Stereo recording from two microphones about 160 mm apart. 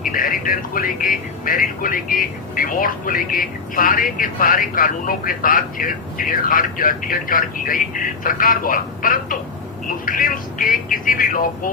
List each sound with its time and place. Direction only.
0.0 s speech: 60° left (ahead or behind)